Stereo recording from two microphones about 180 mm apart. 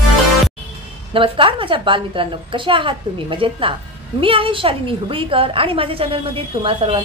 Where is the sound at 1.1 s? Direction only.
30° right (ahead or behind).